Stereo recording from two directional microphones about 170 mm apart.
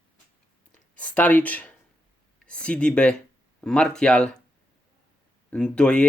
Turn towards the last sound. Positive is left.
turn(degrees=5)  # may be behind; listen again after turning